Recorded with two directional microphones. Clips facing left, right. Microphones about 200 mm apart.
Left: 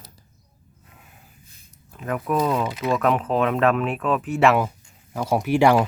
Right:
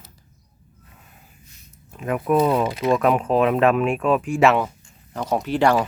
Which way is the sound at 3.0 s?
10° right (ahead or behind).